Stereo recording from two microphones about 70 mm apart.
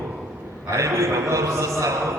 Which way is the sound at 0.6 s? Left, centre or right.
Right.